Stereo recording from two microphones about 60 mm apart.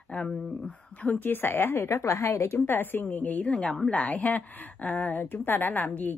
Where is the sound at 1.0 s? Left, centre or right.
Left.